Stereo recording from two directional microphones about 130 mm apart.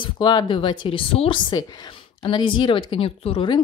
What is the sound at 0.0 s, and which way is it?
Speech, 35° left (ahead or behind).